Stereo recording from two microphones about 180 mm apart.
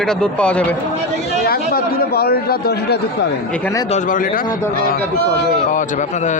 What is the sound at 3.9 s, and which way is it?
Speech, 45° left (ahead or behind).